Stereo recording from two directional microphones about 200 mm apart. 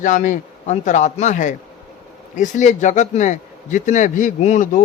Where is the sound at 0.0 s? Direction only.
40° left (ahead or behind).